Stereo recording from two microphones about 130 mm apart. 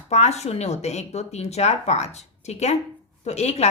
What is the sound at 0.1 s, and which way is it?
A woman's voice, 60° left (ahead or behind).